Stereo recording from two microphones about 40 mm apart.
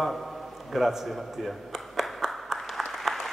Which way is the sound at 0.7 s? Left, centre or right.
Centre.